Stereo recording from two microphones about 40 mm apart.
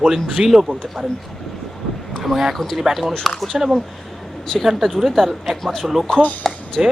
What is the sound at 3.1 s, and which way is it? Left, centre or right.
Speech, centre.